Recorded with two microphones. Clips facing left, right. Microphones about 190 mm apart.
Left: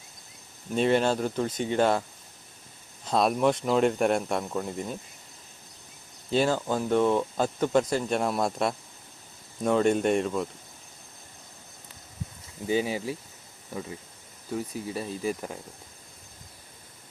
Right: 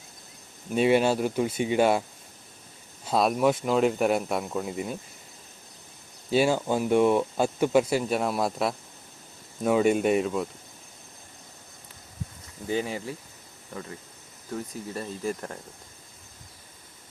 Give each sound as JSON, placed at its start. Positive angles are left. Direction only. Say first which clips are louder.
{"t": 0.7, "sound": "speech", "louder": "right 2 dB", "side_deg": -10}
{"t": 3.1, "sound": "speech", "louder": "right 1 dB", "side_deg": -5}
{"t": 6.3, "sound": "speech", "louder": "right 2 dB", "side_deg": -10}
{"t": 12.6, "sound": "speech", "louder": "left 2 dB", "side_deg": 10}